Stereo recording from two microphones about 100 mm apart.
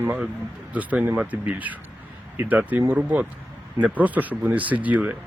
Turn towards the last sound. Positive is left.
turn(degrees=-15)  # may be behind; listen again after turning